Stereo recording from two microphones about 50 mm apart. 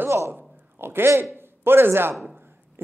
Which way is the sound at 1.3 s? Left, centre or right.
Right.